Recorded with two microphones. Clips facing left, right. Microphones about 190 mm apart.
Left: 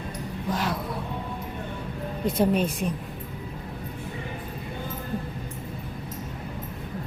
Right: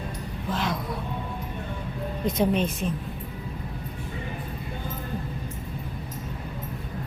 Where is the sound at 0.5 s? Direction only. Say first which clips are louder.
Even; 10° left (ahead or behind).